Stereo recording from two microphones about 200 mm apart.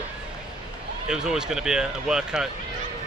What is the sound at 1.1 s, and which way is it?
Speech, 5° right (ahead or behind).